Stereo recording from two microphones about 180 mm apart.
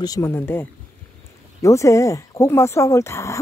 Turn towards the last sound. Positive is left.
turn(degrees=15)  # may be behind; listen again after turning